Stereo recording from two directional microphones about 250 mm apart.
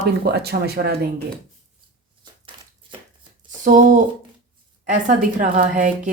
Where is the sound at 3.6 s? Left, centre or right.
Right.